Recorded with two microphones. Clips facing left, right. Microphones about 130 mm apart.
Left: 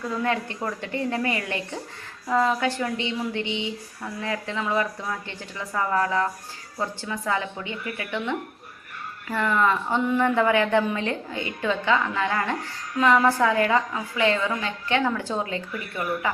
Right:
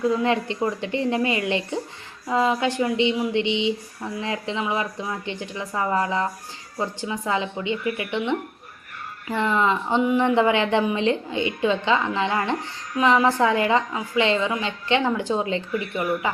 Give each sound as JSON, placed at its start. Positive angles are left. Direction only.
{"t": 0.1, "sound": "a woman's voice", "side_deg": -20}